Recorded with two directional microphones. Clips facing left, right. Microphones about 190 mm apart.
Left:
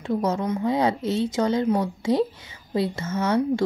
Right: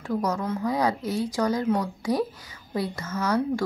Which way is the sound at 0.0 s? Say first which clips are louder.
Left 3 dB; 25° left (ahead or behind).